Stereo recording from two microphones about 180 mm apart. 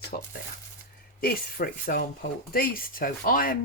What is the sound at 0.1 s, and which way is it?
Speech, 45° left (ahead or behind).